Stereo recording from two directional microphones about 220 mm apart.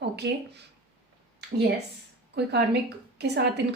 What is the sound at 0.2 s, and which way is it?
Speech, 50° right (ahead or behind).